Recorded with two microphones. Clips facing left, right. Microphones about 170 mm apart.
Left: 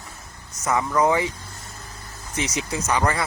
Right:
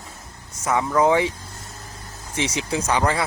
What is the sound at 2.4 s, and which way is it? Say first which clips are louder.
Speech: right 2 dB; 25° right (ahead or behind).